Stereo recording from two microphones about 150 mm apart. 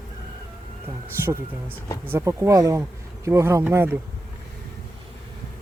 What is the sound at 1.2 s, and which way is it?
Speech, 15° right (ahead or behind).